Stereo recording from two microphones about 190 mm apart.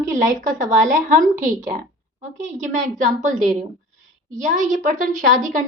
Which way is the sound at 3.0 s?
40° right (ahead or behind).